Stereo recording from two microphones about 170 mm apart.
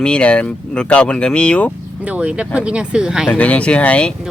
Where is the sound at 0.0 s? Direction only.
5° left (ahead or behind).